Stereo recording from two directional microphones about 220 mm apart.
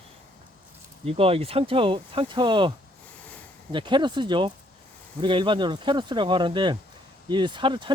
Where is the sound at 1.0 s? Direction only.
25° right (ahead or behind).